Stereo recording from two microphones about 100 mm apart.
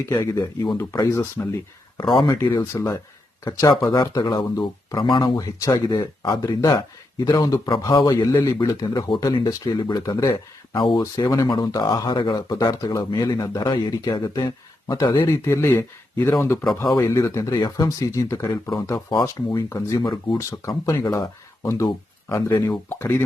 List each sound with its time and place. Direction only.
0.0 s speech: 30° left (ahead or behind)
2.2 s speech: 40° left (ahead or behind)
10.8 s speech: 55° left (ahead or behind)
11.0 s speech: 35° left (ahead or behind)
15.3 s speech: 30° left (ahead or behind)
22.9 s speech: 20° left (ahead or behind)